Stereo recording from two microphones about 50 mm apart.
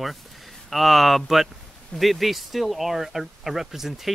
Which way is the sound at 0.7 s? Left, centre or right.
Centre.